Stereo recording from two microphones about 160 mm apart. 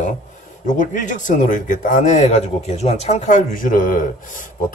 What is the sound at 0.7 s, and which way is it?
Speech, 55° left (ahead or behind).